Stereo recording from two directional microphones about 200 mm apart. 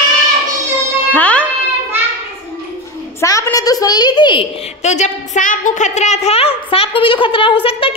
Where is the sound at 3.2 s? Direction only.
15° left (ahead or behind).